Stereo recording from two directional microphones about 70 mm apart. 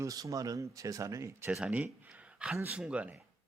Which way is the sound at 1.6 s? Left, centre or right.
Centre.